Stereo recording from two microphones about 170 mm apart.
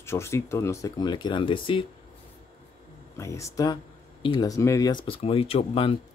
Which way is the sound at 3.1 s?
15° left (ahead or behind).